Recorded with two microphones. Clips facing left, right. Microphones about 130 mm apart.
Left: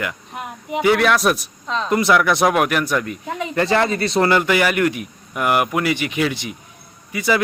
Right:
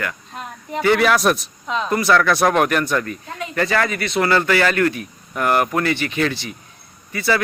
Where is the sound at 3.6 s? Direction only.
25° left (ahead or behind).